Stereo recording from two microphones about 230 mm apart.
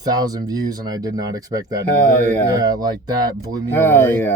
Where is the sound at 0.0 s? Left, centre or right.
Centre.